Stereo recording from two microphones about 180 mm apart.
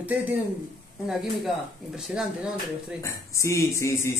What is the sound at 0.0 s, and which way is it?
Speech, 10° right (ahead or behind).